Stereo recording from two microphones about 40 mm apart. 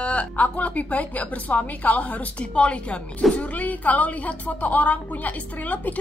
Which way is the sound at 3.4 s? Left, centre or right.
Left.